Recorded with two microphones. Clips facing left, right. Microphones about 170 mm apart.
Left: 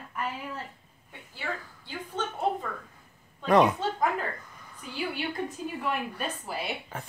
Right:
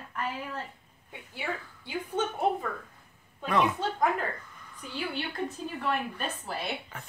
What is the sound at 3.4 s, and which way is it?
Speech, 40° left (ahead or behind).